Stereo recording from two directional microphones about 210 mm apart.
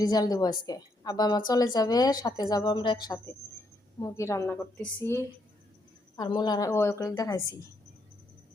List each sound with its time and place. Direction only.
0.0 s a woman's voice: 20° left (ahead or behind)
6.1 s a woman's voice: 20° left (ahead or behind)